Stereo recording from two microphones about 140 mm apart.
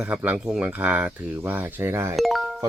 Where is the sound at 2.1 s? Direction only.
Centre (ahead or behind).